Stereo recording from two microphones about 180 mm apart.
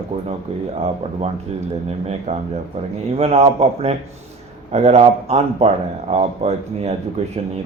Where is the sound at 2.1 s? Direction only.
35° right (ahead or behind).